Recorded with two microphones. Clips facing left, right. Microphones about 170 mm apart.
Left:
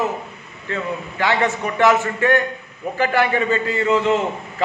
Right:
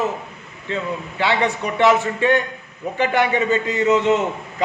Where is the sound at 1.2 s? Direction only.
15° right (ahead or behind).